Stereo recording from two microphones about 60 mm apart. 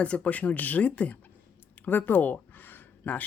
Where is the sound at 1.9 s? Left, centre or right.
Left.